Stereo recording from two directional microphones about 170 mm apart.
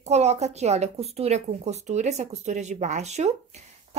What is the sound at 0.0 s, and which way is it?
A woman's voice, 40° right (ahead or behind).